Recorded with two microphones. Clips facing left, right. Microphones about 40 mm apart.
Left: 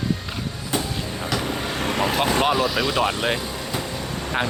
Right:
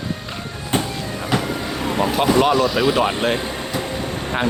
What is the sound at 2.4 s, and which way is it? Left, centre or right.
Speech, centre.